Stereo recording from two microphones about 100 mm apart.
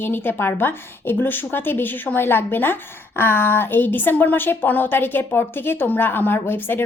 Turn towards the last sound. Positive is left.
turn(degrees=20)  # may be behind; listen again after turning